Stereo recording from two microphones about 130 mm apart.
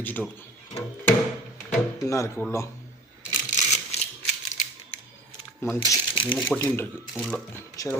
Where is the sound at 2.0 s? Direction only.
25° left (ahead or behind).